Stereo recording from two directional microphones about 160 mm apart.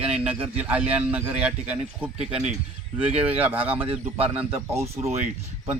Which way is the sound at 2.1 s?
40° right (ahead or behind).